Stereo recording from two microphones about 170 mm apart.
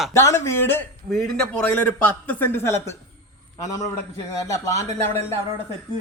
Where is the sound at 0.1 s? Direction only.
15° left (ahead or behind).